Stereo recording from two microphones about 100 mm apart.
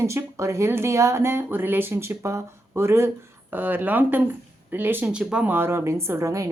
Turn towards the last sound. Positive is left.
turn(degrees=-30)  # may be behind; listen again after turning